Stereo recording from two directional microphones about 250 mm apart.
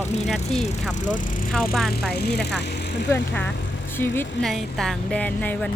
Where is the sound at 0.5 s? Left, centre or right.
Left.